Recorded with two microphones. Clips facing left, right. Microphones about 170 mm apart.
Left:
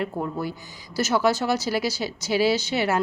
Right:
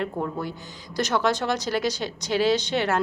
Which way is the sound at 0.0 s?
5° left (ahead or behind).